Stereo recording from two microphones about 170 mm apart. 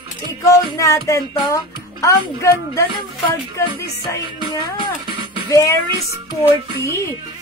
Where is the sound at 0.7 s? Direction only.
20° left (ahead or behind).